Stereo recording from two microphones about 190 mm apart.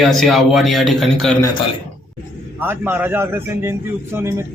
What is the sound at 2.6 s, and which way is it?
A man's voice, 10° right (ahead or behind).